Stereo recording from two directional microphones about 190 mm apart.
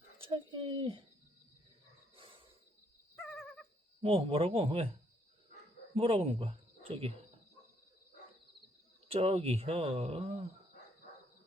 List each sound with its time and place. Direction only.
0.2 s speech: 25° right (ahead or behind)
2.1 s wild animals: 30° right (ahead or behind)
4.0 s speech: 30° right (ahead or behind)
5.9 s speech: 30° right (ahead or behind)
9.0 s speech: 30° right (ahead or behind)